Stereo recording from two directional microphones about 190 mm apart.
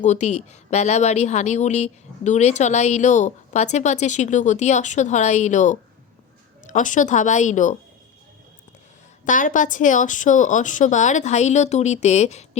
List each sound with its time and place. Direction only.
0.0 s a woman's voice: 40° left (ahead or behind)
6.7 s a woman's voice: 40° left (ahead or behind)
9.2 s a woman's voice: 45° left (ahead or behind)